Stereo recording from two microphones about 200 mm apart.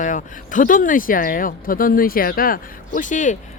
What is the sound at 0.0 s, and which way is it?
Speech, 40° left (ahead or behind).